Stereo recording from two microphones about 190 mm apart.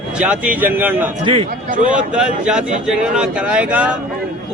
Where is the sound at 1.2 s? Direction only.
30° right (ahead or behind).